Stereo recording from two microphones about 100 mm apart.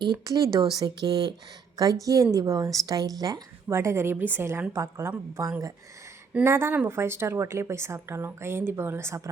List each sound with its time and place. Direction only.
0.0 s a woman's voice: 40° right (ahead or behind)
3.7 s a woman's voice: 25° right (ahead or behind)